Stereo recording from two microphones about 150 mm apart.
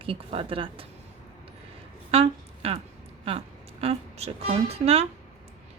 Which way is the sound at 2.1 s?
40° right (ahead or behind).